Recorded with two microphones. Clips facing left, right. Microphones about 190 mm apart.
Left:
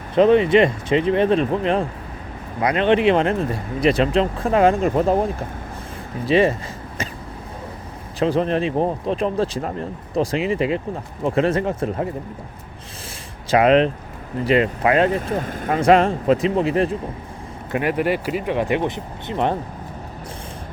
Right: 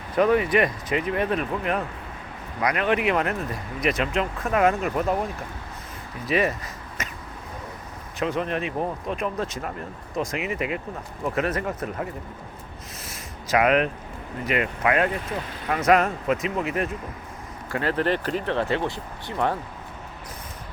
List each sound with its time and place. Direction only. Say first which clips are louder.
0.1 s speech: left 6 dB; 25° left (ahead or behind)
8.2 s speech: left 7 dB; 30° left (ahead or behind)
13.5 s speech: left 6 dB; 30° left (ahead or behind)
15.3 s speech: left 7 dB; 50° left (ahead or behind)
15.7 s speech: left 5 dB; 30° left (ahead or behind)
17.7 s speech: left 4 dB; 15° left (ahead or behind)